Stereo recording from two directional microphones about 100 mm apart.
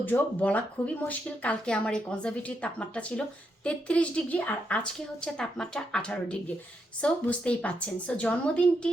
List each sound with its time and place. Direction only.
0.0 s a woman's voice: 15° left (ahead or behind)